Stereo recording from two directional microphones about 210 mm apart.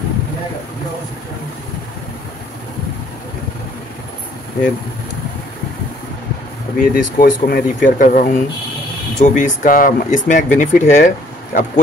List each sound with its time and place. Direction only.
6.8 s speech: 40° left (ahead or behind)